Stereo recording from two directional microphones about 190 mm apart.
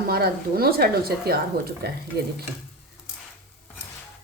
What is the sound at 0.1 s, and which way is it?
A woman's voice, 55° right (ahead or behind).